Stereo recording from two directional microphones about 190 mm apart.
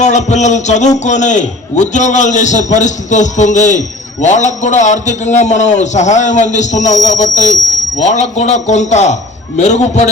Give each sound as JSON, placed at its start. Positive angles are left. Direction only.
{"t": 0.0, "sound": "a man's voice", "side_deg": 40}